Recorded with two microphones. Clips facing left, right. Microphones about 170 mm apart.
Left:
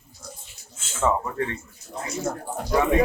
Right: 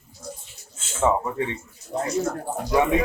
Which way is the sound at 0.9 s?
15° right (ahead or behind).